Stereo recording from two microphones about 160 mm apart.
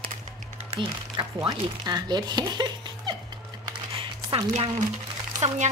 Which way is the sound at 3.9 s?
35° right (ahead or behind).